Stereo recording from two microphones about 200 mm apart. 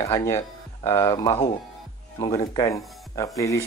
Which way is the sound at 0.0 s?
15° left (ahead or behind).